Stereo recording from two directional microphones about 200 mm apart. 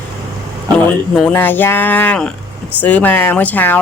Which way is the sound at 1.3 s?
10° left (ahead or behind).